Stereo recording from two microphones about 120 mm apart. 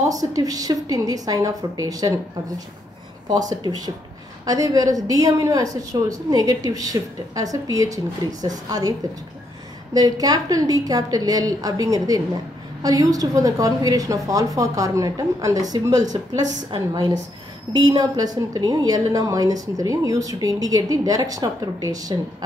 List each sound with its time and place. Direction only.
0.0 s a woman's voice: 30° right (ahead or behind)
3.3 s a woman's voice: 35° right (ahead or behind)
9.9 s a woman's voice: 30° right (ahead or behind)